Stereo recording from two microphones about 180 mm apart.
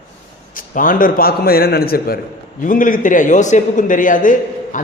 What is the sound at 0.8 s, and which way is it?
A man's voice, 50° left (ahead or behind).